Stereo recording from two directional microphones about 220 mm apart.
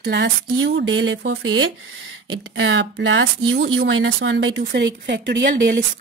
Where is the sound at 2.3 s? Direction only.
60° right (ahead or behind).